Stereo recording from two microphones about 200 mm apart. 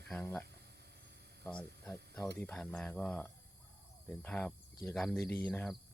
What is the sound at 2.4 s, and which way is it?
Speech, 5° left (ahead or behind).